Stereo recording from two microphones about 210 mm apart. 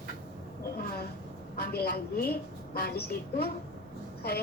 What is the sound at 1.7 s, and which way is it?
A woman's voice, 45° left (ahead or behind).